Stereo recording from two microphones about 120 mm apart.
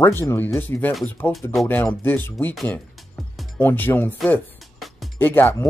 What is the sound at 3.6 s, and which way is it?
Speech, 15° left (ahead or behind).